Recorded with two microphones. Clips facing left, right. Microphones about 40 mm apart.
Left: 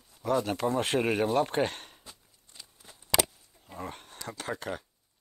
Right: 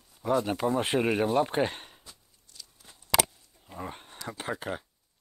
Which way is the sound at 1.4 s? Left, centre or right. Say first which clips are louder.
Right 1 dB; centre.